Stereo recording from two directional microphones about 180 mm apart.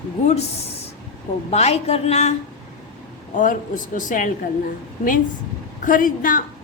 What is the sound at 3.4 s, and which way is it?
Speech, 45° left (ahead or behind).